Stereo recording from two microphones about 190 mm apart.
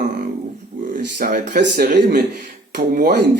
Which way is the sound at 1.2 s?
45° right (ahead or behind).